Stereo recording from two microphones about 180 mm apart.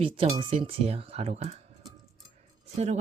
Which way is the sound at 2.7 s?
35° right (ahead or behind).